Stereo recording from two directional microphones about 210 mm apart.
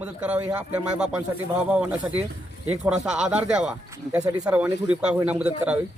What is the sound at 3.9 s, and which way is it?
A man's voice, 15° right (ahead or behind).